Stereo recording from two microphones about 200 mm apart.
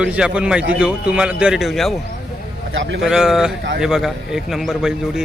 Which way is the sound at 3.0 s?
5° right (ahead or behind).